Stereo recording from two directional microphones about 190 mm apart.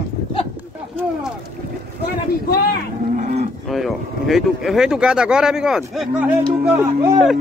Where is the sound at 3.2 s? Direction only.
35° right (ahead or behind).